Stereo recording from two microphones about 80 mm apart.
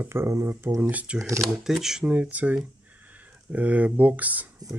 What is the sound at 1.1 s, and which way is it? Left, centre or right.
Speech, right.